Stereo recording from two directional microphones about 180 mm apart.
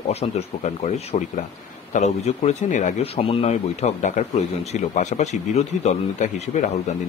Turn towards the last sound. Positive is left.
turn(degrees=40)  # may be behind; listen again after turning